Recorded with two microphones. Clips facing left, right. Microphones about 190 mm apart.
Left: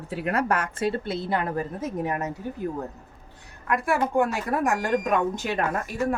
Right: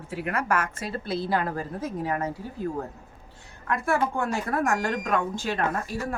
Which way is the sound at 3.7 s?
15° left (ahead or behind).